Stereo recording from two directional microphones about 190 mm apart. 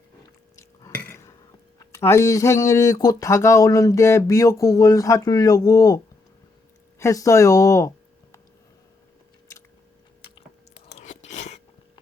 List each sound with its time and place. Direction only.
0.8 s a sound: 15° left (ahead or behind)
7.0 s speech: 15° left (ahead or behind)
10.9 s chewing: 40° left (ahead or behind)